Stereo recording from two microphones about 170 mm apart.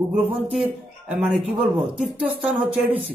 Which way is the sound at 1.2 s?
5° right (ahead or behind).